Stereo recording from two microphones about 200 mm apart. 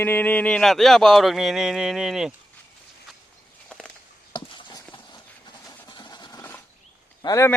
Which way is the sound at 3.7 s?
5° left (ahead or behind).